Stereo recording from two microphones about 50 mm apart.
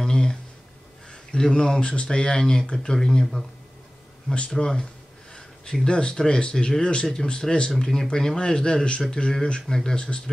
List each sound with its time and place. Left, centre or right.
0.0 s a sound: centre
1.3 s speech: centre
4.6 s speech: centre
5.9 s speech: centre